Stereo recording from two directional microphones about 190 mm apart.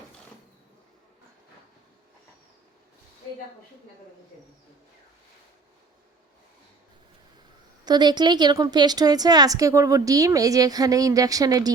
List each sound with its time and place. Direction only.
7.9 s a woman's voice: 20° right (ahead or behind)